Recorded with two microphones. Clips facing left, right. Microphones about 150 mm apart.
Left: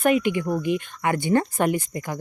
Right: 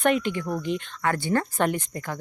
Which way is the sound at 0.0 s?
10° left (ahead or behind).